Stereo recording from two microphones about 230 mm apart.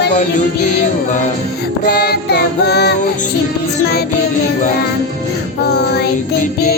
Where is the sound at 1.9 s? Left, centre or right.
Left.